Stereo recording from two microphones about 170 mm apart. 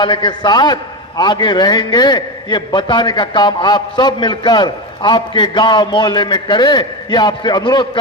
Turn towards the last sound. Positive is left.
turn(degrees=25)  # may be behind; listen again after turning